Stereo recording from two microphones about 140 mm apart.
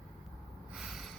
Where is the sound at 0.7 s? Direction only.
5° right (ahead or behind).